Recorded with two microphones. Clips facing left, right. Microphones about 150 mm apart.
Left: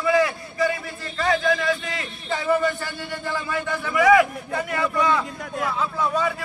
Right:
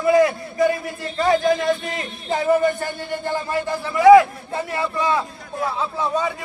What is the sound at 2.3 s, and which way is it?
A man's voice, 45° right (ahead or behind).